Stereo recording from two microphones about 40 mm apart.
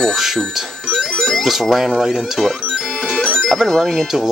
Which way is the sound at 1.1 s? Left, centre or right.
Centre.